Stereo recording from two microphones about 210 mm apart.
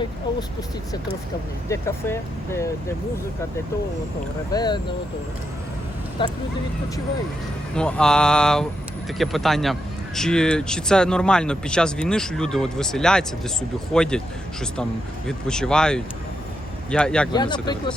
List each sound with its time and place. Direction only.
1.7 s speech: 15° left (ahead or behind)
4.5 s speech: 20° left (ahead or behind)
6.2 s speech: 20° left (ahead or behind)
7.8 s speech: 5° left (ahead or behind)
15.3 s speech: 5° left (ahead or behind)
17.3 s speech: 20° left (ahead or behind)